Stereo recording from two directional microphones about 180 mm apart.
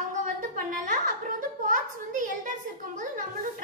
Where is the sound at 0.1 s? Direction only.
45° right (ahead or behind).